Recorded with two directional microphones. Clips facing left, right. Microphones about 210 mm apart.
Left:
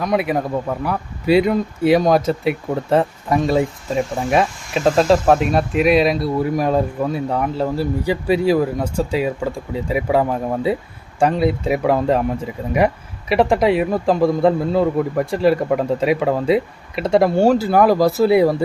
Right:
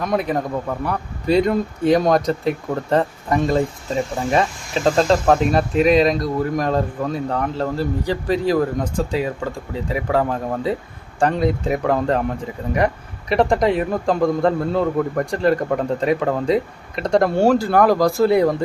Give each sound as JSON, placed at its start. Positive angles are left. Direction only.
{"t": 0.0, "sound": "speech", "side_deg": 5}